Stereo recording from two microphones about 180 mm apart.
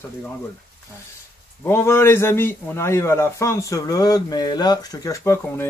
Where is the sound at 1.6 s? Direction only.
15° left (ahead or behind).